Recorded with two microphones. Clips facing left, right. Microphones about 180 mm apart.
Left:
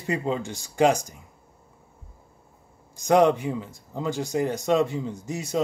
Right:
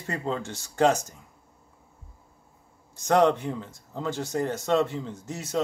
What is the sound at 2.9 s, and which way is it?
Speech, 10° left (ahead or behind).